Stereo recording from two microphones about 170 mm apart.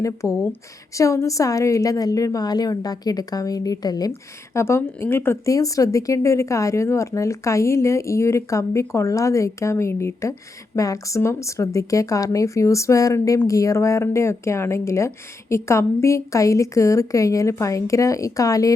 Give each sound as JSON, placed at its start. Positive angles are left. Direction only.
{"t": 0.0, "sound": "a woman's voice", "side_deg": 20}